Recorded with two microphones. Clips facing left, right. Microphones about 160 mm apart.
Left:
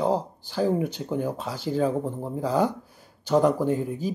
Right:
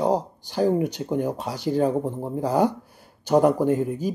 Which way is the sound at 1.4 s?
45° right (ahead or behind).